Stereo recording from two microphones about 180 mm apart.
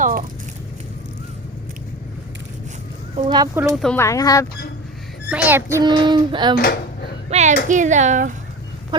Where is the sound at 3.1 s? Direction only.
25° right (ahead or behind).